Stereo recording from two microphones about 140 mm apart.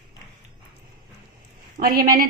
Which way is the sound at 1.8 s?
90° right.